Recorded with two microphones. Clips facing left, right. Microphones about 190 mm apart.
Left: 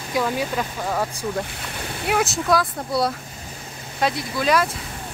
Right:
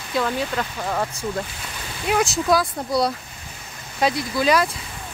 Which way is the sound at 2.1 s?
Centre (ahead or behind).